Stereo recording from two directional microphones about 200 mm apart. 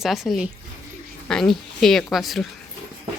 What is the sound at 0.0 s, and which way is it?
A woman's voice, centre (ahead or behind).